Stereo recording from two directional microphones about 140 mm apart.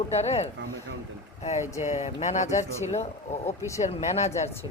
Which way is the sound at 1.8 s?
55° left (ahead or behind).